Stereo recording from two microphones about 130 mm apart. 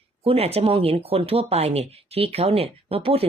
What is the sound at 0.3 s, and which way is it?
Speech, 50° right (ahead or behind).